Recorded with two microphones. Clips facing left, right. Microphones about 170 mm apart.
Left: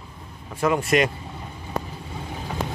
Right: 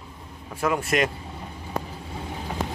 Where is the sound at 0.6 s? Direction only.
Centre (ahead or behind).